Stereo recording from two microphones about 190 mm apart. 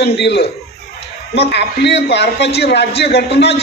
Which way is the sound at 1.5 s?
65° left (ahead or behind).